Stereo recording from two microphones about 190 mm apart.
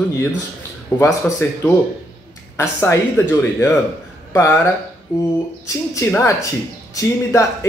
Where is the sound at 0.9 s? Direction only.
10° left (ahead or behind).